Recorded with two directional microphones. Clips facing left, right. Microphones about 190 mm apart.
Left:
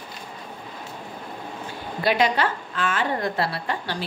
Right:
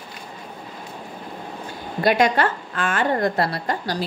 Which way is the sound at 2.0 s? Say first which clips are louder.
Right 3 dB; 45° right (ahead or behind).